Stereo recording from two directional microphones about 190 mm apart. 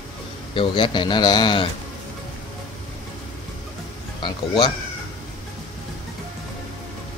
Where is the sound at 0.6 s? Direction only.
25° left (ahead or behind).